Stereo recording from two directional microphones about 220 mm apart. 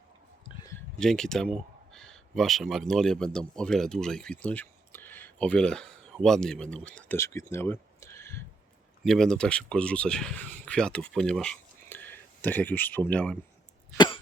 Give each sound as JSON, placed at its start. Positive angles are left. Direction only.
{"t": 0.9, "sound": "speech", "side_deg": 5}
{"t": 13.9, "sound": "cough", "side_deg": 20}